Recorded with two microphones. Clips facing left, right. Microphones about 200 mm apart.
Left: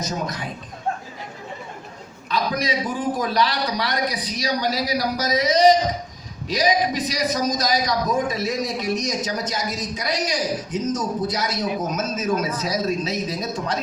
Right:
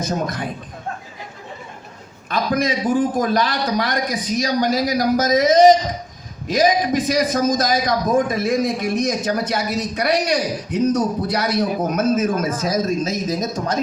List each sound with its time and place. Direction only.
0.0 s a man's voice: 55° right (ahead or behind)
2.3 s a man's voice: 50° right (ahead or behind)